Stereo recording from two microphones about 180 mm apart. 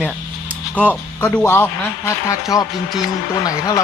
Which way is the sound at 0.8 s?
10° left (ahead or behind).